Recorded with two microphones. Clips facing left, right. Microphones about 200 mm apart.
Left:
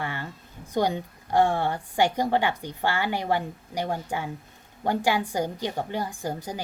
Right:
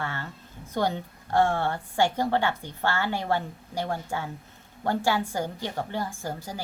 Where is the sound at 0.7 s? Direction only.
15° left (ahead or behind).